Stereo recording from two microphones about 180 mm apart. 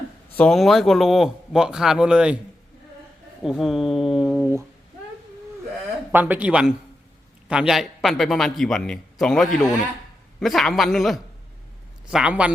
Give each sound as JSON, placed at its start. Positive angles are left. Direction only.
{"t": 0.3, "sound": "a man's voice", "side_deg": 5}
{"t": 3.4, "sound": "a man's voice", "side_deg": 0}
{"t": 6.1, "sound": "a man's voice", "side_deg": -10}